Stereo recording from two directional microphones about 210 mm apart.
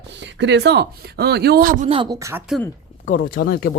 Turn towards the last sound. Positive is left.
turn(degrees=50)  # may be behind; listen again after turning